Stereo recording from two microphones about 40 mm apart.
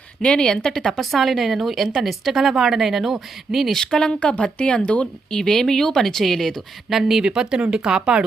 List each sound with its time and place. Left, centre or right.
0.3 s speech: centre
0.9 s speech: centre
3.7 s speech: centre
4.1 s speech: left
5.3 s speech: centre
6.9 s speech: centre
7.3 s speech: centre